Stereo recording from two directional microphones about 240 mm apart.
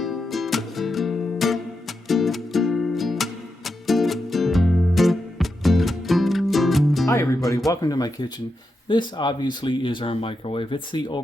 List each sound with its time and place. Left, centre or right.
0.0 s music: centre
7.1 s music: centre
7.7 s speech: centre